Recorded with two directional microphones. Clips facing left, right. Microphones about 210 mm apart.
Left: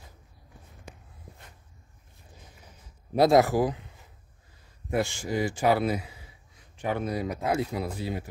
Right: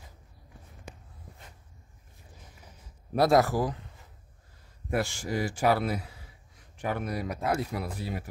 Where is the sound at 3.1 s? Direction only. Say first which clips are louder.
Left 3 dB; 20° left (ahead or behind).